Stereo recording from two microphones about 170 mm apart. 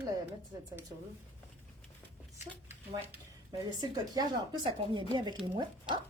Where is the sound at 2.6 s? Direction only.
10° right (ahead or behind).